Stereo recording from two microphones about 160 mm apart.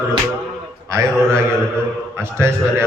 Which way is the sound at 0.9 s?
15° right (ahead or behind).